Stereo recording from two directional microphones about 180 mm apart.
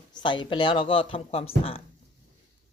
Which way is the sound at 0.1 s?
25° left (ahead or behind).